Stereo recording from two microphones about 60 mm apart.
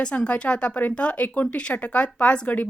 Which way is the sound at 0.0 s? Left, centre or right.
Centre.